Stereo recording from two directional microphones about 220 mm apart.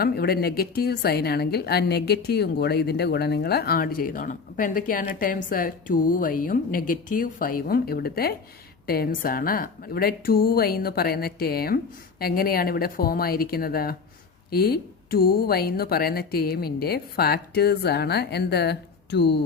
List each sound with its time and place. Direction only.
0.0 s a woman's voice: 45° left (ahead or behind)